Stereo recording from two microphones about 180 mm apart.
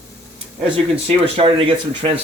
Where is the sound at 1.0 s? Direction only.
35° right (ahead or behind).